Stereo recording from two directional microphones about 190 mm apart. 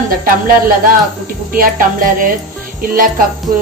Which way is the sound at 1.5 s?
45° right (ahead or behind).